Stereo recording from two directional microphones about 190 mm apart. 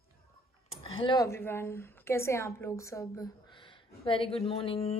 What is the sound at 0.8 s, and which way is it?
A woman's voice, 25° left (ahead or behind).